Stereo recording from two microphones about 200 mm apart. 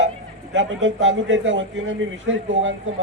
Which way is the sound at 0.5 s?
65° right (ahead or behind).